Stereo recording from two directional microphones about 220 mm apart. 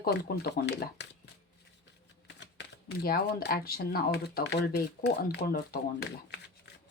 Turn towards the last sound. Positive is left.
turn(degrees=45)  # may be behind; listen again after turning